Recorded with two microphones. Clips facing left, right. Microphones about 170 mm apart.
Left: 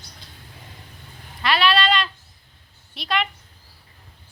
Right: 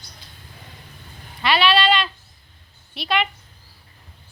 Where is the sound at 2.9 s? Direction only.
5° right (ahead or behind).